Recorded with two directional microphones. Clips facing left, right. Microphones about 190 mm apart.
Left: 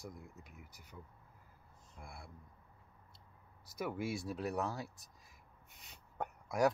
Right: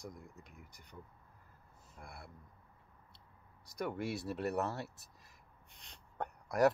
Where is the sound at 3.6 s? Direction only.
5° left (ahead or behind).